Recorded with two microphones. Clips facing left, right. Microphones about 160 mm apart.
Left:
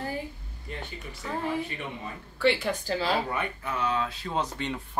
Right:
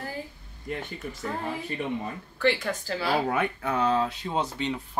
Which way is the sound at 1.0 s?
50° right (ahead or behind).